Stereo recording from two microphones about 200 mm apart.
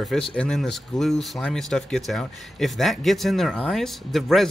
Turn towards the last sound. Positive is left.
turn(degrees=0)  # may be behind; listen again after turning